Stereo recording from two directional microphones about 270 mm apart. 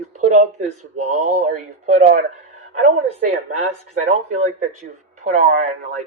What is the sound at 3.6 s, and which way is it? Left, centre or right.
Speech, right.